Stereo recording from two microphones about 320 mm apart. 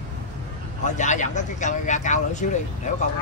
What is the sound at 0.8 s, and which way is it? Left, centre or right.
Vehicle, left.